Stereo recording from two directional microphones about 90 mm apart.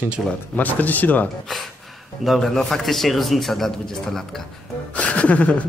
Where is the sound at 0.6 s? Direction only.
20° left (ahead or behind).